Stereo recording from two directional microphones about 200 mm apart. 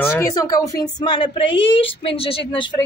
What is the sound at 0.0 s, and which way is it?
Speech, 15° left (ahead or behind).